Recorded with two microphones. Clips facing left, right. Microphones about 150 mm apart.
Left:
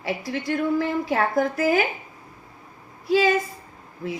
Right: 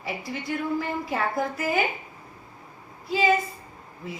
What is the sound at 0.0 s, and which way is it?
A woman's voice, 85° left.